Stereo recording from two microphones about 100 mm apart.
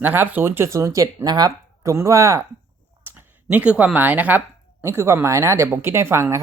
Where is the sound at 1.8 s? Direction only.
30° right (ahead or behind).